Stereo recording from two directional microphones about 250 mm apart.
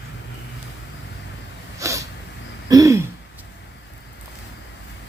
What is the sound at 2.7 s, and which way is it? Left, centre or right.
Throat clearing, centre.